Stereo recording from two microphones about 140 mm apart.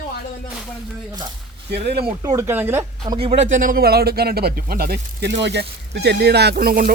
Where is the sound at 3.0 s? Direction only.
35° right (ahead or behind).